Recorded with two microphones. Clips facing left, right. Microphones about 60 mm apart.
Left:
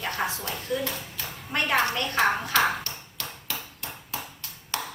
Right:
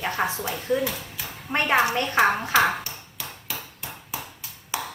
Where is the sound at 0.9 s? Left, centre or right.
Centre.